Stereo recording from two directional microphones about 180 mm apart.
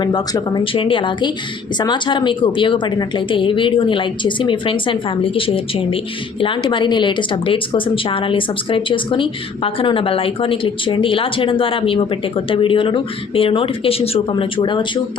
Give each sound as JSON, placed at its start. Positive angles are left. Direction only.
{"t": 0.0, "sound": "speech", "side_deg": 25}